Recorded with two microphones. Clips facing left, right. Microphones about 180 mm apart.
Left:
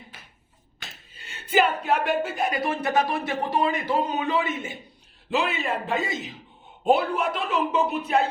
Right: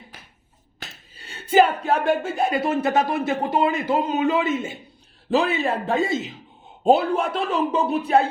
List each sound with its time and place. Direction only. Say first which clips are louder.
1.3 s speech: right 5 dB; 30° right (ahead or behind)